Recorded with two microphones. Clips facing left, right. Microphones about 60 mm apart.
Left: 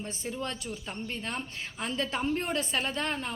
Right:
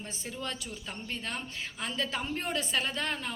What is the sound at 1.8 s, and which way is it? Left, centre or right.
A woman's voice, left.